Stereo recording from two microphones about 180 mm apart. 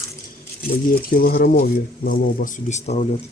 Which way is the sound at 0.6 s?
55° left (ahead or behind).